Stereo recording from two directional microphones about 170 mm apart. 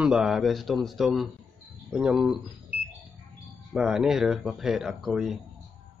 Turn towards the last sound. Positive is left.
turn(degrees=0)  # may be behind; listen again after turning